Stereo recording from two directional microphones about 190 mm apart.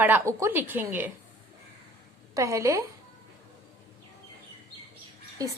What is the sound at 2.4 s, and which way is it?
Speech, 15° right (ahead or behind).